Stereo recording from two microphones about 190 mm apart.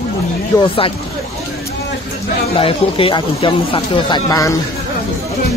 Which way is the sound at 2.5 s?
30° left (ahead or behind).